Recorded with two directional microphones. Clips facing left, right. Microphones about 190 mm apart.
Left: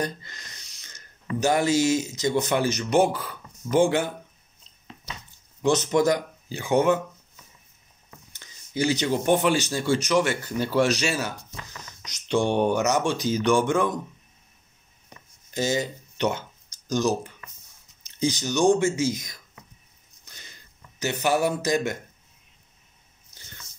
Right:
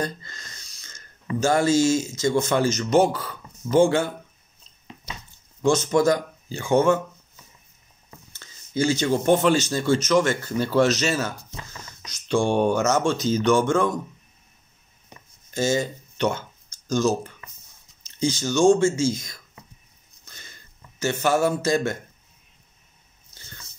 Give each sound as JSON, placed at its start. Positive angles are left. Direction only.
{"t": 0.0, "sound": "snort", "side_deg": 15}
{"t": 1.4, "sound": "speech", "side_deg": 15}
{"t": 5.6, "sound": "speech", "side_deg": 15}
{"t": 8.3, "sound": "speech", "side_deg": 15}
{"t": 15.5, "sound": "speech", "side_deg": 15}
{"t": 20.2, "sound": "a sound", "side_deg": 15}
{"t": 23.3, "sound": "a sound", "side_deg": 15}